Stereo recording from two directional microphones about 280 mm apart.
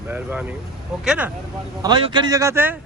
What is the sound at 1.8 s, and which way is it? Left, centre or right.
Speech, centre.